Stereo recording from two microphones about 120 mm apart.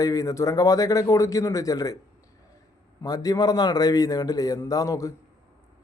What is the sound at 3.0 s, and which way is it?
A man's voice, 30° left (ahead or behind).